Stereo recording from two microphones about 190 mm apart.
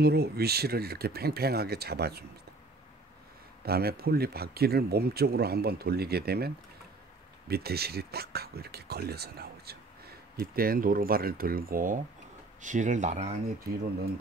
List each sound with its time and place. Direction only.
0.0 s speech: 55° right (ahead or behind)
3.6 s speech: 55° right (ahead or behind); by 13.4 s 35° right (ahead or behind)